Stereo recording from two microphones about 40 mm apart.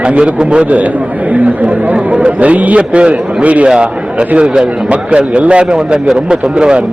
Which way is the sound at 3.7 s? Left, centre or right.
Right.